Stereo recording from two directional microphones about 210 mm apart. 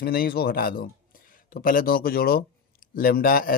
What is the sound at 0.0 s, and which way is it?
A man's voice, 45° left (ahead or behind).